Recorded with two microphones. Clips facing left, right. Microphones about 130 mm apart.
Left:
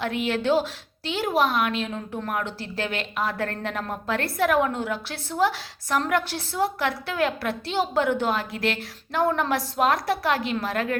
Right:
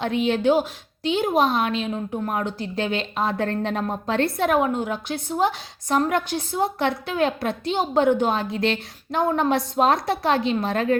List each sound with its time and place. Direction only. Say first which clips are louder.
0.0 s a woman's voice: right 4 dB; 20° right (ahead or behind)